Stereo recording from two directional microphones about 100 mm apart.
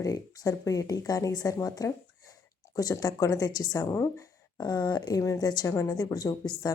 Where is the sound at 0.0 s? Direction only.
35° left (ahead or behind).